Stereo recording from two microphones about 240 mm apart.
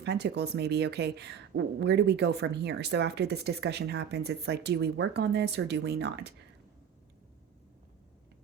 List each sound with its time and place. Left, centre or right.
0.0 s speech: right